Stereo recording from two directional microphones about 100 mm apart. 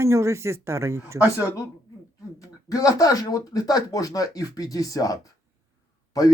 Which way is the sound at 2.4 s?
35° left (ahead or behind).